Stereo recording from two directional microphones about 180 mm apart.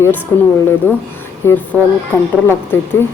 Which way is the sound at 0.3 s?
15° left (ahead or behind).